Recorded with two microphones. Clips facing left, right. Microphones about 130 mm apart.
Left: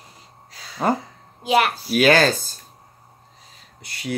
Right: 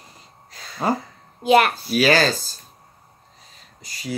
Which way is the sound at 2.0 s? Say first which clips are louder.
Left 2 dB; 50° left (ahead or behind).